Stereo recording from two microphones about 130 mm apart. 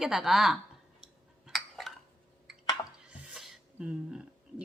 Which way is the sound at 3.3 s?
5° right (ahead or behind).